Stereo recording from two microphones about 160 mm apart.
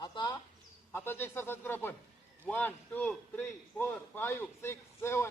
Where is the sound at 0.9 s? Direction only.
15° left (ahead or behind).